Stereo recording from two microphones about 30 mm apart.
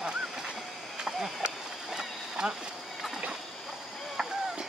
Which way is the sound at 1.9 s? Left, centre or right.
Centre.